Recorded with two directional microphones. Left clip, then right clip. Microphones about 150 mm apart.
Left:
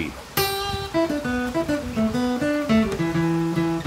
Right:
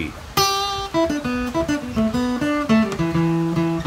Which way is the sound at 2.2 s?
35° right (ahead or behind).